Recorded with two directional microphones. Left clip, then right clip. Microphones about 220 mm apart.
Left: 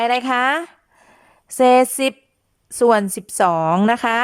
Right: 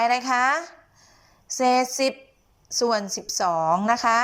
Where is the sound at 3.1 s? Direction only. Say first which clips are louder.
Right 1 dB; 60° left (ahead or behind).